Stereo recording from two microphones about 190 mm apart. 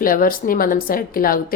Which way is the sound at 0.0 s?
45° left (ahead or behind).